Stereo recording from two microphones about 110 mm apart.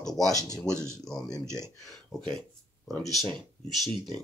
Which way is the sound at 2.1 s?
30° left (ahead or behind).